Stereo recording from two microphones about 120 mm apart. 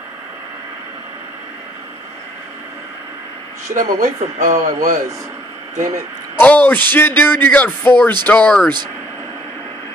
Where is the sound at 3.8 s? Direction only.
90° right.